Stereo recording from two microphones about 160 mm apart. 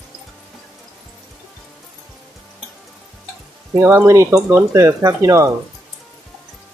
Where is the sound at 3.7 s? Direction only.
15° right (ahead or behind).